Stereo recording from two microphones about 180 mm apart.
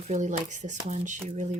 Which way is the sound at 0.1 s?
40° right (ahead or behind).